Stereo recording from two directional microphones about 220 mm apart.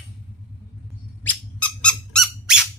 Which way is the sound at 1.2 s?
10° left (ahead or behind).